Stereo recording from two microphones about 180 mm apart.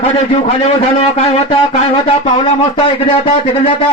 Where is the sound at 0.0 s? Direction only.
35° left (ahead or behind).